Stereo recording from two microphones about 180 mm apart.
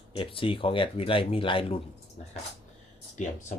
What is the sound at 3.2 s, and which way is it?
Speech, 40° left (ahead or behind).